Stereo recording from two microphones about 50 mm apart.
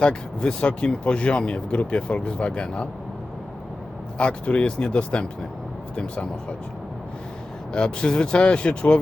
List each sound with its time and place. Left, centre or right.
0.0 s speech: centre
4.2 s speech: left
7.7 s speech: centre